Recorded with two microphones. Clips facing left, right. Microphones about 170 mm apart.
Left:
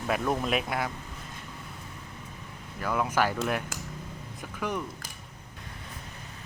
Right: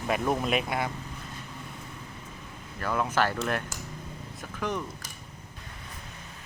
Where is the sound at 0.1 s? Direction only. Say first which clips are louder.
Right 1 dB; centre (ahead or behind).